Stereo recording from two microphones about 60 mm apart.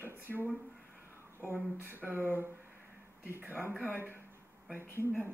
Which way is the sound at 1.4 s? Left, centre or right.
Right.